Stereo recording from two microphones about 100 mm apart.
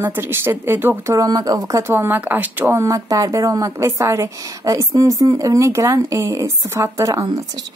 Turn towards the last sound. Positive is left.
turn(degrees=-30)  # may be behind; listen again after turning